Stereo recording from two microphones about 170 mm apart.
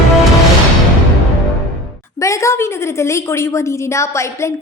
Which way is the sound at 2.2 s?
15° left (ahead or behind).